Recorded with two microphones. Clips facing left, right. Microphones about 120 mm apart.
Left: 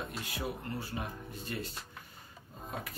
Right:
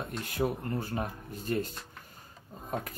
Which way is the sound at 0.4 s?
50° right (ahead or behind).